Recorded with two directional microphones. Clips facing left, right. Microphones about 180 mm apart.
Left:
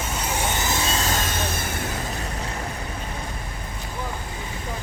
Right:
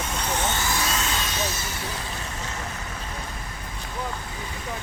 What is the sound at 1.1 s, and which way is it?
Music, 50° left (ahead or behind).